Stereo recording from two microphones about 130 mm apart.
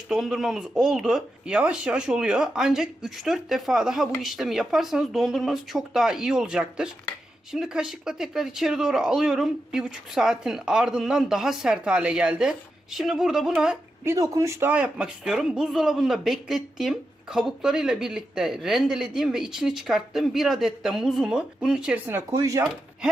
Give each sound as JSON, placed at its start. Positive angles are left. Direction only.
{"t": 0.1, "sound": "speech", "side_deg": 0}
{"t": 14.0, "sound": "speech", "side_deg": -25}
{"t": 22.4, "sound": "speech", "side_deg": -25}